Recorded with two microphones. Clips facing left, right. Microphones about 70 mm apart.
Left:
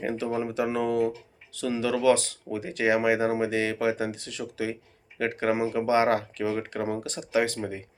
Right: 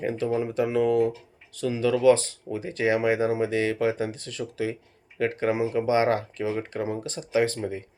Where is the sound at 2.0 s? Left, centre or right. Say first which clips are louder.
Right 3 dB; right.